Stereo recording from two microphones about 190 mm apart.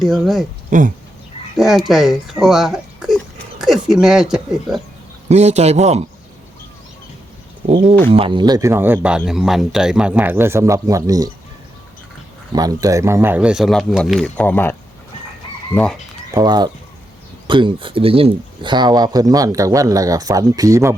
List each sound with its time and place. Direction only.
0.0 s speech: centre (ahead or behind)
0.7 s speech: 45° right (ahead or behind)
1.5 s speech: centre (ahead or behind)
2.4 s a sound: centre (ahead or behind)
4.0 s speech: 5° right (ahead or behind)
5.3 s a man's voice: 35° right (ahead or behind)
7.7 s speech: 25° right (ahead or behind)
12.5 s speech: 20° right (ahead or behind); by 16.0 s 5° left (ahead or behind)
16.3 s speech: 20° right (ahead or behind)